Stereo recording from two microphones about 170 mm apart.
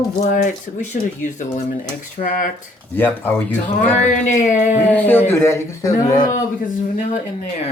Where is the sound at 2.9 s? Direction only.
10° left (ahead or behind).